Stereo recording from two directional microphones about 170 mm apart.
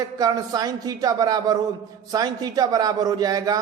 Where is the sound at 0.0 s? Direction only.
25° right (ahead or behind).